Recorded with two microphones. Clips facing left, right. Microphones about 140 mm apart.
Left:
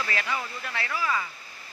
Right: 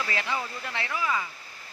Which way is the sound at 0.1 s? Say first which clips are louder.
Even; 20° right (ahead or behind).